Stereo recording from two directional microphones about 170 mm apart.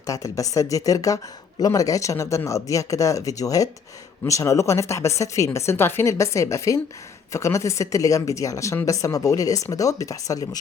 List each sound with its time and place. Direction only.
0.1 s speech: 20° left (ahead or behind)